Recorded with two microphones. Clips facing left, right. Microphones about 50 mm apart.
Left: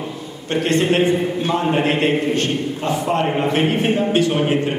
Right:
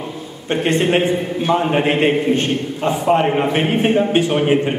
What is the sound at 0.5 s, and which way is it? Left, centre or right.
A man's voice, right.